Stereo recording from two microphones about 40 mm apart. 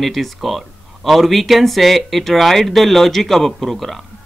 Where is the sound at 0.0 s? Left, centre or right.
Centre.